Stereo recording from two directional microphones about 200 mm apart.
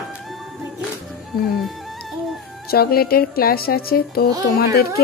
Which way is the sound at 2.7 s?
50° left (ahead or behind).